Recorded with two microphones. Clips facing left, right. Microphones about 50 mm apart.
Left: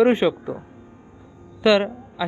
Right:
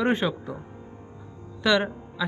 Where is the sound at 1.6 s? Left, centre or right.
Left.